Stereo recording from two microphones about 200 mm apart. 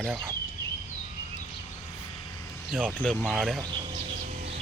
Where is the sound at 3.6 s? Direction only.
25° right (ahead or behind).